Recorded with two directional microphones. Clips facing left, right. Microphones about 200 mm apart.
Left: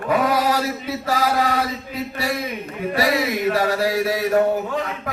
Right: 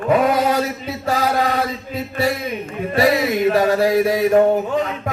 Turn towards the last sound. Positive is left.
turn(degrees=-20)  # may be behind; listen again after turning